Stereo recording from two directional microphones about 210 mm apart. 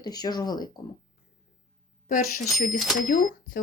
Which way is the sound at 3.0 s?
40° left (ahead or behind).